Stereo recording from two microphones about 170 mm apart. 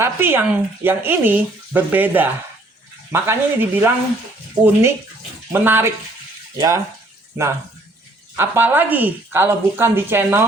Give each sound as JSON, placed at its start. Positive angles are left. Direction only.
{"t": 0.0, "sound": "speech", "side_deg": -15}
{"t": 8.4, "sound": "speech", "side_deg": -10}